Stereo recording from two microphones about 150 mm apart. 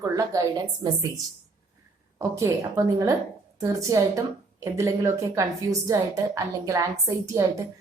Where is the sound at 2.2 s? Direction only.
20° right (ahead or behind).